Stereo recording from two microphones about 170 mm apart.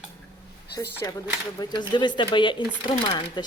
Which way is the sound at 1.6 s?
25° left (ahead or behind).